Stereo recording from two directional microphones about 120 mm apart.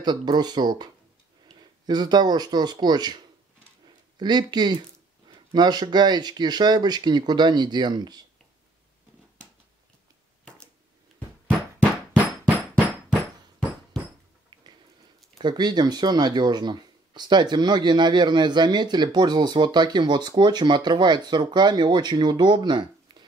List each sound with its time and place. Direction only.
0.0 s speech: 35° right (ahead or behind)
1.5 s a sound: 5° left (ahead or behind)
1.9 s speech: 35° right (ahead or behind)
4.2 s speech: 35° right (ahead or behind)
15.3 s speech: 40° right (ahead or behind)